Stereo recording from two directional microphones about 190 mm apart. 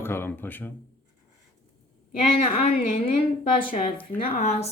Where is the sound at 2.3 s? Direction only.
35° left (ahead or behind).